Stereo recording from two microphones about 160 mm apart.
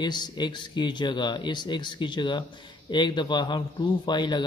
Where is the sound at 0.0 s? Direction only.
25° left (ahead or behind).